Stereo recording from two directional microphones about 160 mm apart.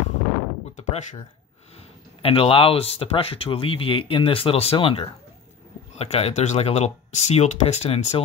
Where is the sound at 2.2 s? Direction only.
35° left (ahead or behind).